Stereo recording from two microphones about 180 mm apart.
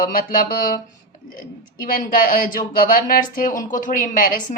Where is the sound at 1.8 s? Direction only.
50° left (ahead or behind).